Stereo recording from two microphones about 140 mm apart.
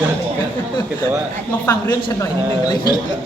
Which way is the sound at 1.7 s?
25° left (ahead or behind).